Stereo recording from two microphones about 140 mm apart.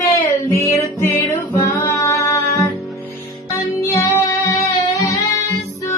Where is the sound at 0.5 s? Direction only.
20° left (ahead or behind).